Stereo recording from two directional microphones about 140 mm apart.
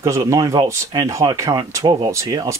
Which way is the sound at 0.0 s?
20° right (ahead or behind).